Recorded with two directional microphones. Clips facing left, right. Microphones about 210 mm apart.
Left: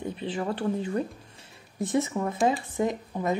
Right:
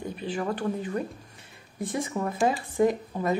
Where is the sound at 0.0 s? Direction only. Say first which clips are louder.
Even; 25° left (ahead or behind).